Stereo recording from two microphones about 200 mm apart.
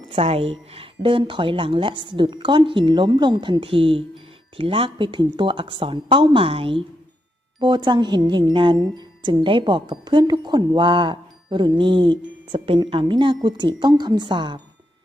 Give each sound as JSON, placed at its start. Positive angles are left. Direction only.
{"t": 0.1, "sound": "a woman's voice", "side_deg": -30}